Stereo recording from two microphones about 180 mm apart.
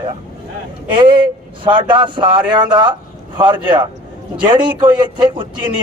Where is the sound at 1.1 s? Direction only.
25° right (ahead or behind).